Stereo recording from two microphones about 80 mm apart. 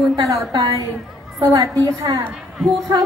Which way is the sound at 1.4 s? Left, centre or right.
Right.